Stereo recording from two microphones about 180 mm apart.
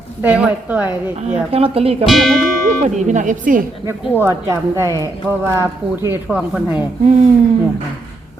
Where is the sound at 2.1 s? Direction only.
Centre (ahead or behind).